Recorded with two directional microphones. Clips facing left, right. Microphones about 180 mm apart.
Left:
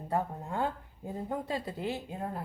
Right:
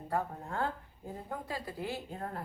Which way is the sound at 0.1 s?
15° left (ahead or behind).